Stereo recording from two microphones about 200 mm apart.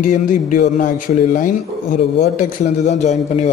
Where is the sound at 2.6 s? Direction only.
35° left (ahead or behind).